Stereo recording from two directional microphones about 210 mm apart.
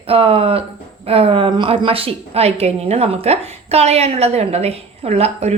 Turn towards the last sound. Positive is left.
turn(degrees=-30)  # may be behind; listen again after turning